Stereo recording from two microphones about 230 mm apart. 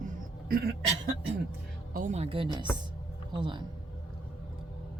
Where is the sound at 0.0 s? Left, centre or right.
Right.